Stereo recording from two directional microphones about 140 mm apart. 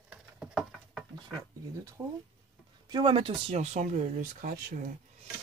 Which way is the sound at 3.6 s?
55° right (ahead or behind).